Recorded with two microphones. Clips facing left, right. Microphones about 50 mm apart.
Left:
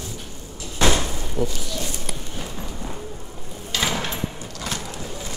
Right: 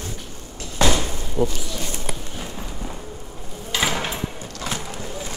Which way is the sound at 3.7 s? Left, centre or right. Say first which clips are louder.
Right 1 dB; centre.